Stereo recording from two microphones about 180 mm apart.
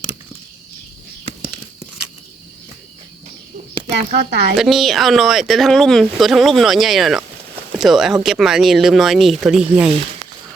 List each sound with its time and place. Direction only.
3.9 s speech: 70° right (ahead or behind)
4.5 s speech: centre (ahead or behind)